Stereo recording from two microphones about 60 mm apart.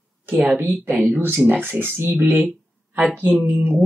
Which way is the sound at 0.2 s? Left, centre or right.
Right.